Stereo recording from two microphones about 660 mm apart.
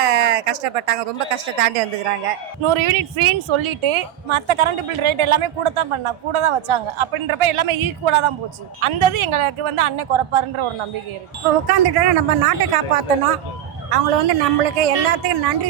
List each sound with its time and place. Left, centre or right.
0.0 s a woman's voice: right